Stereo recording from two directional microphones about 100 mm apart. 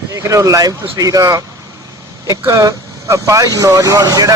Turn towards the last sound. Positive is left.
turn(degrees=-35)  # may be behind; listen again after turning